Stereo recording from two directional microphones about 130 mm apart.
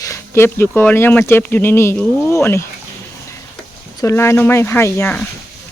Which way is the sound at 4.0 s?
20° left (ahead or behind).